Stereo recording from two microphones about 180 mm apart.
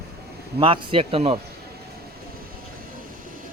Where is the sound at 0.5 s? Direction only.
30° right (ahead or behind).